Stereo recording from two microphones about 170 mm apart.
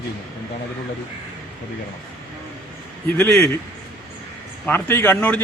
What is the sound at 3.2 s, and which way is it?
Speech, 5° left (ahead or behind).